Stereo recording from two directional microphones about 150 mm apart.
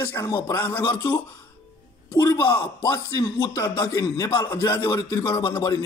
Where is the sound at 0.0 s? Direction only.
20° left (ahead or behind).